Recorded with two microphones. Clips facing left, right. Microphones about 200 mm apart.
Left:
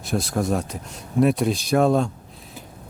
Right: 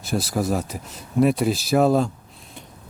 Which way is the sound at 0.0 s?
Centre (ahead or behind).